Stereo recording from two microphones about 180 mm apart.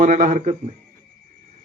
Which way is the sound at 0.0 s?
45° right (ahead or behind).